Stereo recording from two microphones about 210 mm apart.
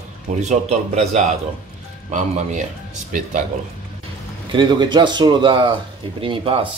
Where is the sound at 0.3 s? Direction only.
35° right (ahead or behind).